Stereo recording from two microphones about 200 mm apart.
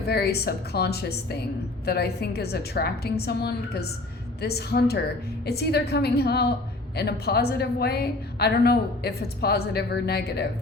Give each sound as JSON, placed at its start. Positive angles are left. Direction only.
{"t": 0.1, "sound": "a woman's voice", "side_deg": 50}